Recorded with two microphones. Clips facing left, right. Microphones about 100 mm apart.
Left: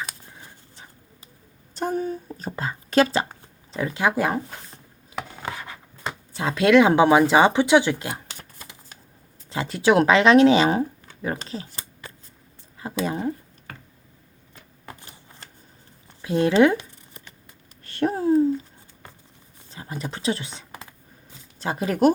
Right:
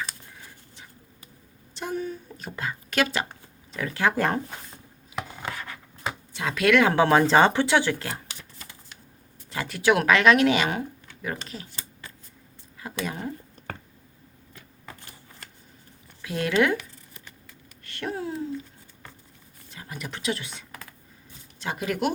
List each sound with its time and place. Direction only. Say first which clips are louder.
0.3 s a sound: left 1 dB; 25° left (ahead or behind)
1.7 s speech: left 5 dB; 40° left (ahead or behind); by 4.4 s 5° left (ahead or behind)
5.5 s a sound: left 2 dB; 20° left (ahead or behind)
6.3 s speech: left 5 dB; 30° left (ahead or behind)
9.5 s speech: left 3 dB; 25° left (ahead or behind)
14.8 s typewriter: left 3 dB; 25° left (ahead or behind)
16.2 s speech: left 6 dB; 30° left (ahead or behind)
17.8 s a sound: left 10 dB; 35° left (ahead or behind)
19.7 s speech: left 5 dB; 30° left (ahead or behind)